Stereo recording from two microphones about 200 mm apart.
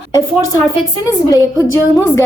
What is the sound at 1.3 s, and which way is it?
Speech, 15° left (ahead or behind).